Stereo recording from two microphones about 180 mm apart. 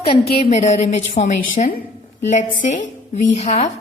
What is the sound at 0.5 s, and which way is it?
A woman's voice, 40° left (ahead or behind).